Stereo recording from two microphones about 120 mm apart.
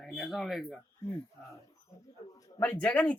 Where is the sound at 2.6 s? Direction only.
10° left (ahead or behind).